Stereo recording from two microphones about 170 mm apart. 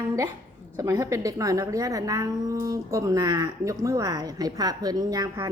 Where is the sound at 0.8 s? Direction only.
20° right (ahead or behind).